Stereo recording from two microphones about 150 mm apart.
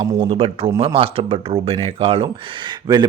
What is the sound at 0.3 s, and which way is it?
Speech, 40° right (ahead or behind).